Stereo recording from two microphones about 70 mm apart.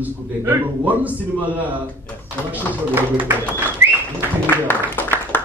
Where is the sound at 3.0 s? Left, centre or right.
Right.